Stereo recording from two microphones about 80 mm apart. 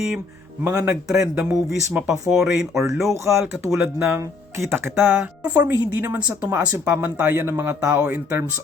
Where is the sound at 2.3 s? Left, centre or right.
Centre.